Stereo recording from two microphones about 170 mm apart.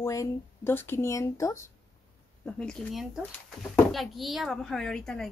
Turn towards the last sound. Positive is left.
turn(degrees=5)  # may be behind; listen again after turning